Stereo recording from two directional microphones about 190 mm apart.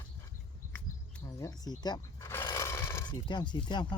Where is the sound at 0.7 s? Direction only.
15° left (ahead or behind).